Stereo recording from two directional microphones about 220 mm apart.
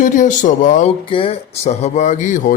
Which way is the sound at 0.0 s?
35° left (ahead or behind).